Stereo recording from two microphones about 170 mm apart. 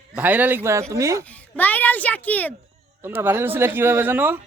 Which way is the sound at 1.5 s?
10° left (ahead or behind).